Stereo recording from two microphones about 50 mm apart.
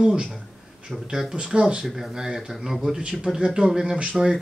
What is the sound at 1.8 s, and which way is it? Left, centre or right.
Speech, centre.